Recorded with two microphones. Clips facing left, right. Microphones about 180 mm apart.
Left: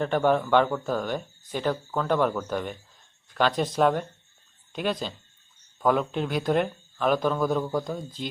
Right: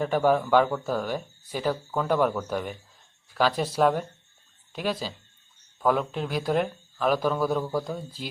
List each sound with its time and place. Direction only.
0.0 s speech: 5° right (ahead or behind)